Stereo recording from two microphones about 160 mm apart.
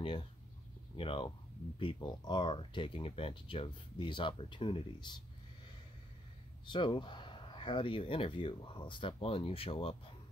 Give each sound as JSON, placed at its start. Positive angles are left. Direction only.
{"t": 0.9, "sound": "speech", "side_deg": 30}
{"t": 6.6, "sound": "speech", "side_deg": 30}